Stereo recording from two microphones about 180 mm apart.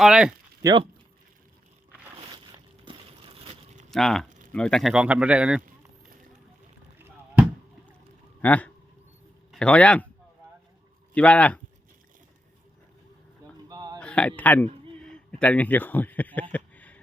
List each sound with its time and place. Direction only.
0.0 s speech: 5° right (ahead or behind)
0.6 s speech: 25° right (ahead or behind)
2.3 s a sound: 25° right (ahead or behind)
3.9 s speech: centre (ahead or behind)
8.4 s a man's voice: 10° left (ahead or behind)
11.1 s speech: 5° left (ahead or behind)
13.7 s hiccup: 20° right (ahead or behind)
14.0 s speech: 5° left (ahead or behind)
15.0 s a sound: 5° left (ahead or behind)